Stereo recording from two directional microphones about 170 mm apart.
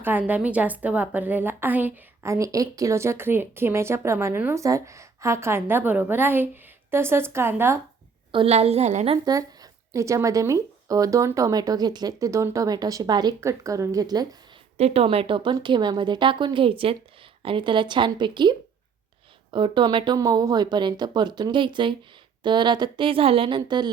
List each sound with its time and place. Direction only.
0.0 s a woman's voice: 10° right (ahead or behind)
8.3 s a woman's voice: 35° right (ahead or behind)
9.2 s speech: 20° right (ahead or behind)
14.8 s speech: 35° right (ahead or behind)